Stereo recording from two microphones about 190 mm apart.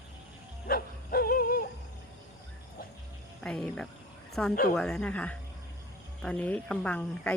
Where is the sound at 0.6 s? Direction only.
50° left (ahead or behind).